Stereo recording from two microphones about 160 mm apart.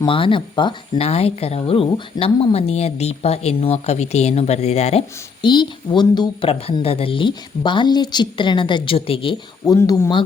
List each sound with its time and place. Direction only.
0.0 s speech: 30° left (ahead or behind)
9.6 s speech: 20° left (ahead or behind)